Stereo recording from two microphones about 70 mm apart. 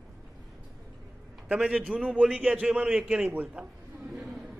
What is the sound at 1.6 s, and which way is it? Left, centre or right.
A man's voice, centre.